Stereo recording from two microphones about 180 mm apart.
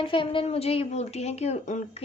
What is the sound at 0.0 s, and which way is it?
Speech, 30° left (ahead or behind).